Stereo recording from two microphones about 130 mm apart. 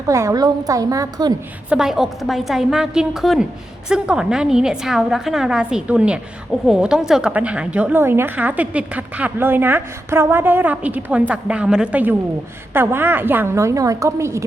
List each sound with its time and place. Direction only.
0.1 s a woman's voice: 25° right (ahead or behind)
1.7 s a woman's voice: 5° right (ahead or behind); by 14.4 s 20° right (ahead or behind)